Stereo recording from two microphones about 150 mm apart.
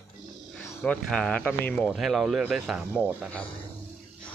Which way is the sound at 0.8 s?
5° left (ahead or behind).